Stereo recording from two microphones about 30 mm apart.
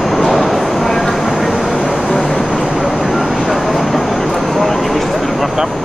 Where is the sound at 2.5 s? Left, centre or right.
Right.